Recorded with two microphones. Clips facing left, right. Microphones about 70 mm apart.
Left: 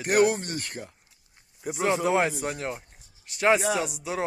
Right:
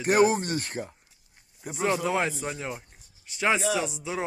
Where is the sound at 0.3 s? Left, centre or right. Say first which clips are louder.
Right 4 dB; right.